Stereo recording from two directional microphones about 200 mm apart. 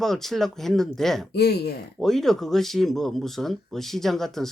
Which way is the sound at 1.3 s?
55° left (ahead or behind).